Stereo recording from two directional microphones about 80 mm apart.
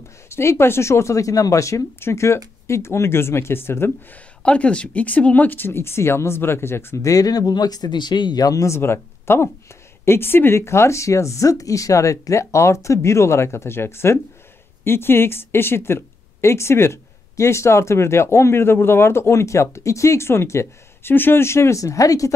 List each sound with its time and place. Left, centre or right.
0.3 s speech: left
4.4 s speech: centre; by 7.1 s left
7.1 s speech: left
8.7 s speech: left